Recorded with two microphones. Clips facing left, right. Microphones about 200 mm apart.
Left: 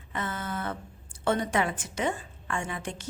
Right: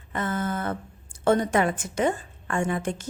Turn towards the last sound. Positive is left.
turn(degrees=-50)  # may be behind; listen again after turning